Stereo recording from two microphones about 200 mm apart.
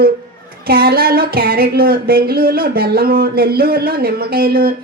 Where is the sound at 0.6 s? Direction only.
50° right (ahead or behind).